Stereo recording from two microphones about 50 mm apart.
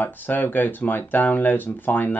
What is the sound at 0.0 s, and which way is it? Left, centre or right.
Speech, left.